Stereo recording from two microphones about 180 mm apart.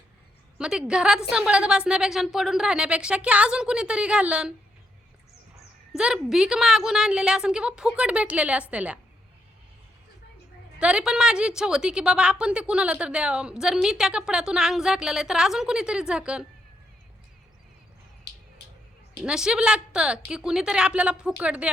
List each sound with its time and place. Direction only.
0.6 s a woman's voice: 5° right (ahead or behind)
5.9 s a woman's voice: 5° right (ahead or behind)
10.8 s a woman's voice: 5° right (ahead or behind)
18.3 s a sound: 65° left (ahead or behind)
19.2 s a woman's voice: 5° right (ahead or behind)